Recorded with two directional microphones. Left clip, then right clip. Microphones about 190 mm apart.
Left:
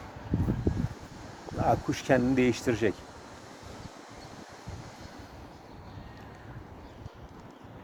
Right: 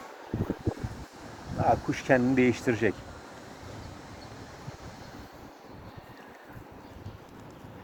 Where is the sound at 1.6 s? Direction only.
30° left (ahead or behind).